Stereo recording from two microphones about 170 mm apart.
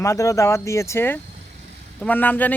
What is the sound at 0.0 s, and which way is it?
Speech, 20° left (ahead or behind).